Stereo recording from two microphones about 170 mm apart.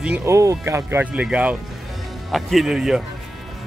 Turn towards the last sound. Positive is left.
turn(degrees=-5)  # may be behind; listen again after turning